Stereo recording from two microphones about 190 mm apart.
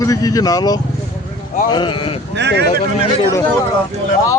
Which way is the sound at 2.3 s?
65° right (ahead or behind).